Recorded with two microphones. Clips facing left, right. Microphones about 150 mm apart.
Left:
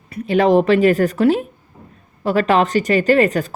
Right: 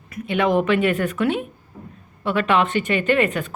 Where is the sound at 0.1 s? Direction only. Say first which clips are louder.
Left 6 dB; 35° left (ahead or behind).